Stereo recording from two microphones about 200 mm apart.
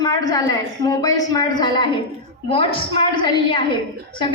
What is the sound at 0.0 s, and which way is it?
A woman's voice, 20° left (ahead or behind).